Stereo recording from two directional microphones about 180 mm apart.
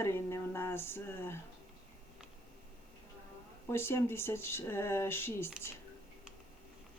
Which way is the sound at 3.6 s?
15° left (ahead or behind).